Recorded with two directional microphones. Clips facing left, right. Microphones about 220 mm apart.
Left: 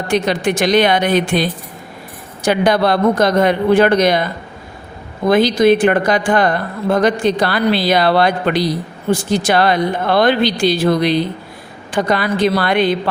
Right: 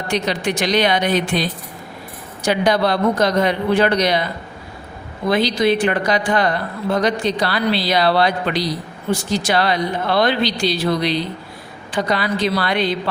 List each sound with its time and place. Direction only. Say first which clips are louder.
0.1 s speech: left 5 dB; 50° left (ahead or behind)
5.3 s speech: left 5 dB; 50° left (ahead or behind)